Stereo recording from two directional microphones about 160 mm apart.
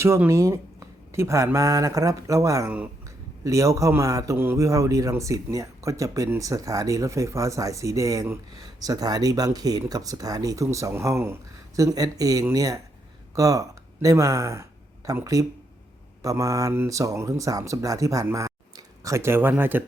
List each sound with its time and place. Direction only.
0.0 s a man's voice: 15° right (ahead or behind)